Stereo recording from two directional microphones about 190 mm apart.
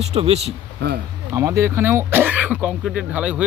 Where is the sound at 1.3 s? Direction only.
15° right (ahead or behind).